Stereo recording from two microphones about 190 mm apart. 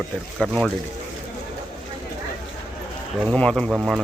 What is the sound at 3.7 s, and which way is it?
Speech, 5° right (ahead or behind).